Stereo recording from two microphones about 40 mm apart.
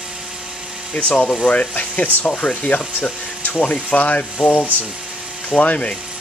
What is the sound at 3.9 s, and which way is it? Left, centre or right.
Speech, left.